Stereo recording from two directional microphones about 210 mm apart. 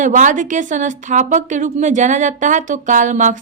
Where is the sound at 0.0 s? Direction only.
35° right (ahead or behind).